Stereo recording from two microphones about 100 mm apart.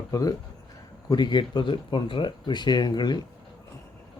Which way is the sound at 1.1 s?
45° left (ahead or behind).